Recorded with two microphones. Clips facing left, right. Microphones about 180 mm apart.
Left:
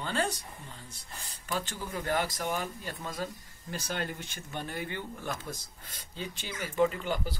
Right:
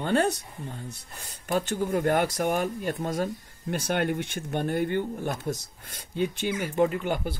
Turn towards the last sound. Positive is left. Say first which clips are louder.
# right 5 dB
turn(degrees=-55)  # may be behind; listen again after turning